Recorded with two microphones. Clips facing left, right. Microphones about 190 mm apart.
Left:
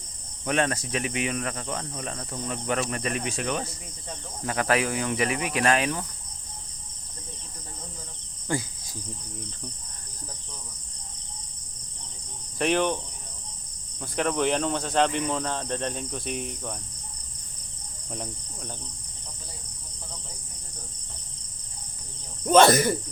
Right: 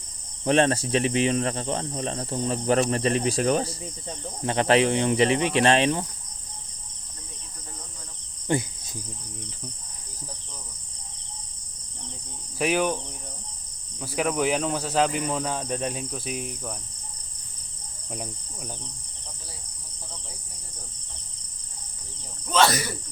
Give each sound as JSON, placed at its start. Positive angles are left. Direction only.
{"t": 0.4, "sound": "speech", "side_deg": -30}
{"t": 8.4, "sound": "cricket", "side_deg": -20}
{"t": 12.5, "sound": "cricket", "side_deg": -5}
{"t": 14.0, "sound": "speech", "side_deg": -5}
{"t": 18.1, "sound": "cricket", "side_deg": -5}
{"t": 22.5, "sound": "speech", "side_deg": 50}